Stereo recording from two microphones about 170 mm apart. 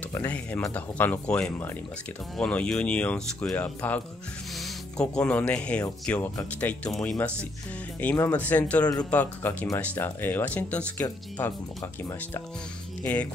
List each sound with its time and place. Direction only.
0.1 s speech: 10° left (ahead or behind)
13.0 s speech: 10° left (ahead or behind)